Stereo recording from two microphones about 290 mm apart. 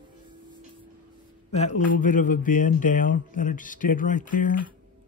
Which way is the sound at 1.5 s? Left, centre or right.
Left.